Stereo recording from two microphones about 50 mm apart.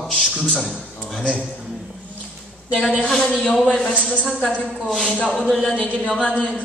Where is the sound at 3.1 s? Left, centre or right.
Centre.